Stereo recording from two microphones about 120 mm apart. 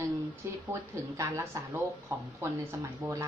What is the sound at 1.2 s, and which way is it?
Speech, 25° right (ahead or behind).